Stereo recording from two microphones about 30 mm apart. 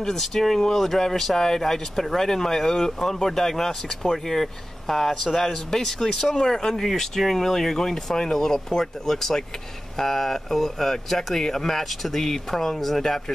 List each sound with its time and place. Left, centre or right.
0.1 s speech: centre
5.9 s speech: left